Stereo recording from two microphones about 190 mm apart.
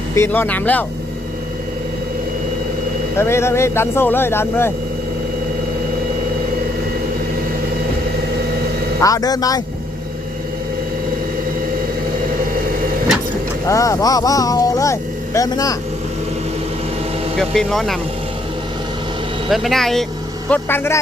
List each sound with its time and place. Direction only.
0.2 s speech: 10° left (ahead or behind)
3.2 s speech: 15° left (ahead or behind)
9.0 s speech: 15° left (ahead or behind)
13.7 s speech: 15° left (ahead or behind)
17.3 s speech: centre (ahead or behind)
19.5 s speech: centre (ahead or behind)